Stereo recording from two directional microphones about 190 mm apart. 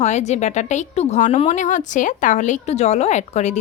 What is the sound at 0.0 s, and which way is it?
Speech, 35° left (ahead or behind).